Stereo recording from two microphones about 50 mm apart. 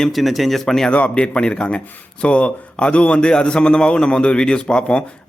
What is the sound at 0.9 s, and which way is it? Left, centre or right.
A man's voice, left.